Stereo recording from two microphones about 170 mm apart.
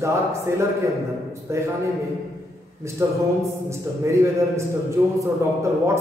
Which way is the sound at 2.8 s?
15° right (ahead or behind).